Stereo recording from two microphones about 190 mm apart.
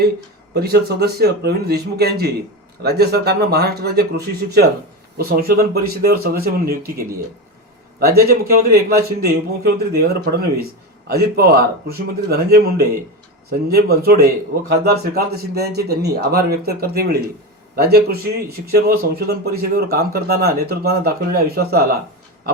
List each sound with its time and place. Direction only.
0.5 s a man's voice: 55° right (ahead or behind)
5.1 s a man's voice: 55° right (ahead or behind)
14.0 s a man's voice: 55° right (ahead or behind)
22.5 s pig: 55° right (ahead or behind)